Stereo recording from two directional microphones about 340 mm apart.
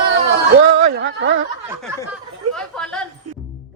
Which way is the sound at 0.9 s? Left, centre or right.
Right.